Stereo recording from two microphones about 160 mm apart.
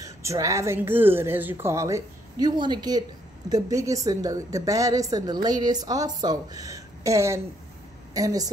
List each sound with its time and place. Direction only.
0.0 s a woman's voice: 20° right (ahead or behind)